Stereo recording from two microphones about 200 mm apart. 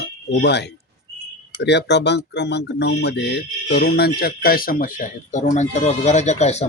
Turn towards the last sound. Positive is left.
turn(degrees=35)  # may be behind; listen again after turning